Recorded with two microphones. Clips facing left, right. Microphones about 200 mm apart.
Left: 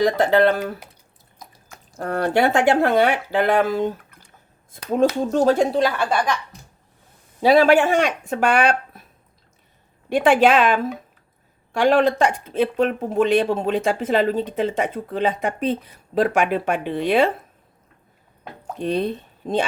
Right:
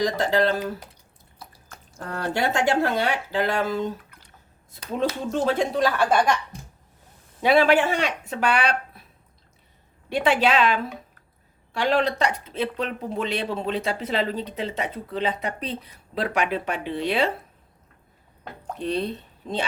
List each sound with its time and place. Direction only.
0.0 s speech: 55° left (ahead or behind)
2.0 s speech: 60° left (ahead or behind); by 5.8 s 40° left (ahead or behind)
7.4 s speech: 40° left (ahead or behind)
10.1 s speech: 45° left (ahead or behind)
18.8 s speech: 50° left (ahead or behind)